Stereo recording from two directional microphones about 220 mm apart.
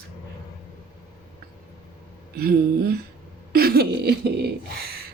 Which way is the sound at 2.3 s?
45° right (ahead or behind).